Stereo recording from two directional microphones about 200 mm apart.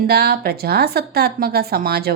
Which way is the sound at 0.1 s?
55° right (ahead or behind).